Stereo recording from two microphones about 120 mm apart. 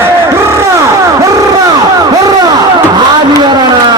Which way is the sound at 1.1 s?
30° right (ahead or behind).